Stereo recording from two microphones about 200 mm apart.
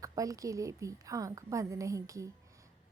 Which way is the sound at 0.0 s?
15° right (ahead or behind).